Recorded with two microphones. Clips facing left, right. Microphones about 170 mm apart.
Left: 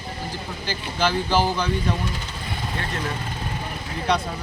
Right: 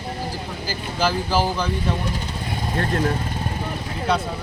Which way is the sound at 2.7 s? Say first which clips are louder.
Right 8 dB; 50° right (ahead or behind).